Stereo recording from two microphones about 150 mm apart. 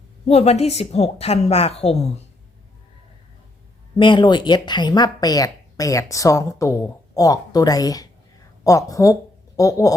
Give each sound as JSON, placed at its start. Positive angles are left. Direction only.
{"t": 0.3, "sound": "a woman's voice", "side_deg": 45}
{"t": 3.9, "sound": "speech", "side_deg": 30}